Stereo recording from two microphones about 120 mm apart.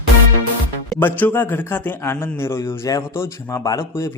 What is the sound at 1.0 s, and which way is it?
A man's voice, 15° left (ahead or behind).